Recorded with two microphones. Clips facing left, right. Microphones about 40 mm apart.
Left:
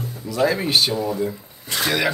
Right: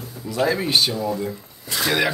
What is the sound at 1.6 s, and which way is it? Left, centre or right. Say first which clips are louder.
Speech: even; left.